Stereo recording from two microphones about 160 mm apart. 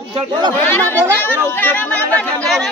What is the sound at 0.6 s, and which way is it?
Speech, 10° left (ahead or behind).